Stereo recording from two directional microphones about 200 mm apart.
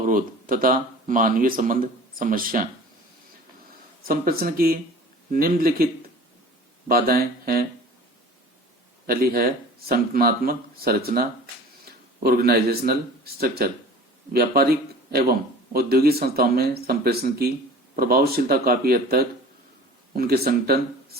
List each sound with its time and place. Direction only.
0.0 s speech: 45° right (ahead or behind)
4.0 s speech: 45° right (ahead or behind)
9.0 s speech: 50° right (ahead or behind)